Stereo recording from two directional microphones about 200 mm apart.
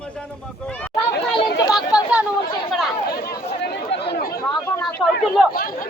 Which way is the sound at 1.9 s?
5° right (ahead or behind).